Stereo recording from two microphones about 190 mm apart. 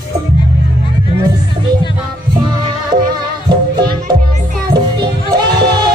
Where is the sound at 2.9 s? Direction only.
20° right (ahead or behind).